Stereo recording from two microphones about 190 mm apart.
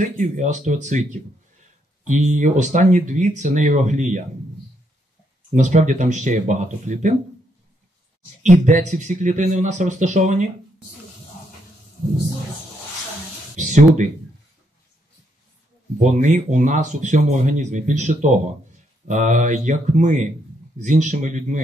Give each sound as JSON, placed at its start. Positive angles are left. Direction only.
{"t": 0.2, "sound": "speech", "side_deg": -40}
{"t": 2.0, "sound": "speech", "side_deg": -40}
{"t": 5.5, "sound": "speech", "side_deg": -40}
{"t": 8.4, "sound": "speech", "side_deg": -40}
{"t": 13.6, "sound": "a sound", "side_deg": -40}
{"t": 16.0, "sound": "speech", "side_deg": -40}